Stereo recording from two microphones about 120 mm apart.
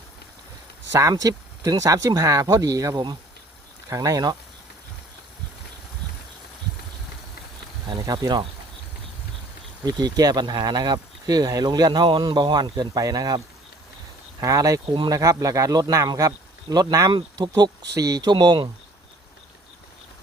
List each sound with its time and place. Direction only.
0.9 s speech: 30° right (ahead or behind)
7.9 s speech: 30° right (ahead or behind)
9.8 s speech: 35° right (ahead or behind)
14.4 s speech: 30° right (ahead or behind)
17.1 s speech: 35° right (ahead or behind)